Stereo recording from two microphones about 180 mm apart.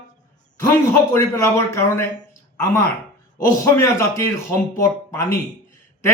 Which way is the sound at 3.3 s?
15° left (ahead or behind).